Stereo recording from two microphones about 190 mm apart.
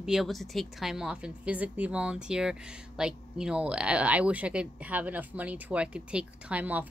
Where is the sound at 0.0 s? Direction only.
Centre (ahead or behind).